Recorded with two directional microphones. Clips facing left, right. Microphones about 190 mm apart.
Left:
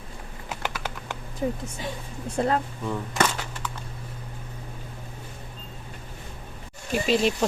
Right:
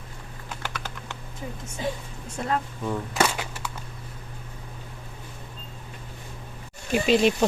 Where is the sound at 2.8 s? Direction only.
5° right (ahead or behind).